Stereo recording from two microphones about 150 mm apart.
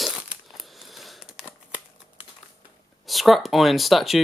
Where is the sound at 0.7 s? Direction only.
Centre (ahead or behind).